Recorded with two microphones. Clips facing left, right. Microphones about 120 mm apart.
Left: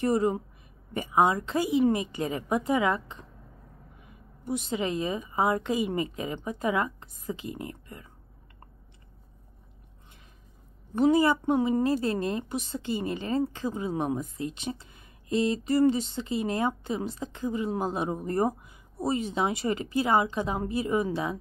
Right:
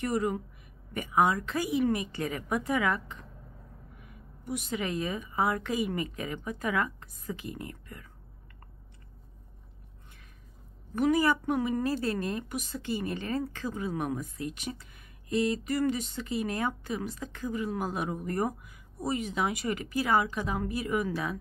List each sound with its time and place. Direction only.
0.0 s a woman's voice: 30° left (ahead or behind)
11.0 s a woman's voice: 25° left (ahead or behind)